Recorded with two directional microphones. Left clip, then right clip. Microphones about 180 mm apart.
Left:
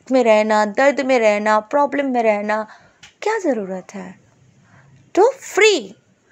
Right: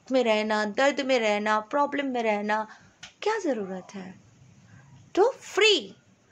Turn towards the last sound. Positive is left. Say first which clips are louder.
# left 7 dB
turn(degrees=35)  # may be behind; listen again after turning